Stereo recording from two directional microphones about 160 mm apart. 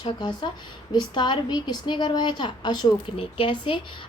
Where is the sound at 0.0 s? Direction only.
30° left (ahead or behind).